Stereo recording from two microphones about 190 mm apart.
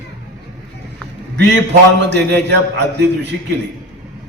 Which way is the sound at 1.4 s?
65° right (ahead or behind).